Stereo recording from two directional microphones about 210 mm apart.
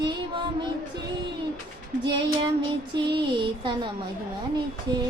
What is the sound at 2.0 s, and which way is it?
Music, 25° right (ahead or behind).